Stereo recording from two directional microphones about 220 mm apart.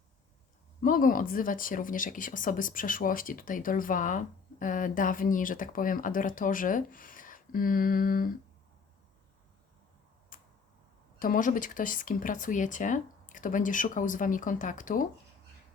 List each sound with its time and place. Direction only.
0.8 s speech: 40° left (ahead or behind)
10.3 s tick-tock: 40° left (ahead or behind)
11.2 s speech: 40° left (ahead or behind)